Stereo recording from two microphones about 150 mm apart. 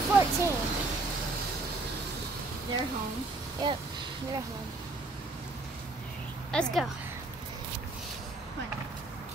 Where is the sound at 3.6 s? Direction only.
30° right (ahead or behind).